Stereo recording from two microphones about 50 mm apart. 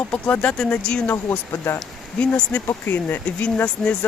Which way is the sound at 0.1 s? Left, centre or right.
Left.